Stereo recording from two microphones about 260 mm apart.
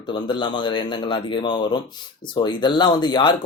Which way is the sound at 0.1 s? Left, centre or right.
Centre.